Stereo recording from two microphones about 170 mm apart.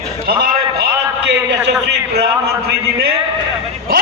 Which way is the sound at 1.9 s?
75° right (ahead or behind).